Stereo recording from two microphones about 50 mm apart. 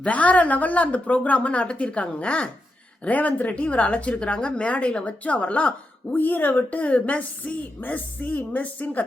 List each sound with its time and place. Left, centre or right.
0.0 s a woman's voice: left